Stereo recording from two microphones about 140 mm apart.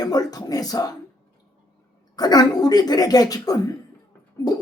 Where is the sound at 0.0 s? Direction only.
25° left (ahead or behind).